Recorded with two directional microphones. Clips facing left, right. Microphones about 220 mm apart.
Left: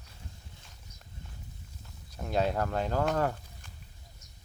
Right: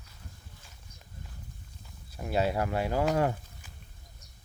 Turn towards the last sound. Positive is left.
turn(degrees=-10)  # may be behind; listen again after turning